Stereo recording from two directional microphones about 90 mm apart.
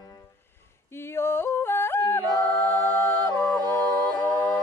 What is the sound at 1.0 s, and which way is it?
Yodeling, 30° left (ahead or behind).